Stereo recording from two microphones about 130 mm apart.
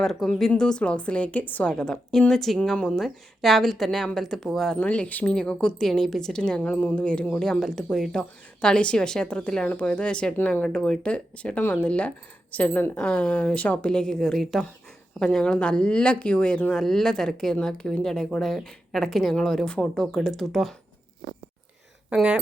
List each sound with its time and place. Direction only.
0.0 s a woman's voice: centre (ahead or behind)
22.1 s speech: 5° right (ahead or behind)